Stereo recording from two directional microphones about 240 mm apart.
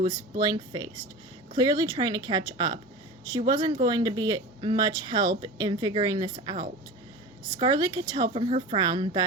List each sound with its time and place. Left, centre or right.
0.0 s speech: centre